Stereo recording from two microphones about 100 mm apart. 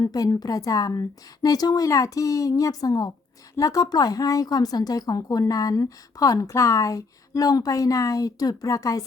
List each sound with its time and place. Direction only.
0.0 s a woman's voice: 40° left (ahead or behind)